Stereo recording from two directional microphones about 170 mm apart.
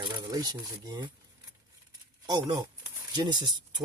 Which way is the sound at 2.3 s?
25° right (ahead or behind).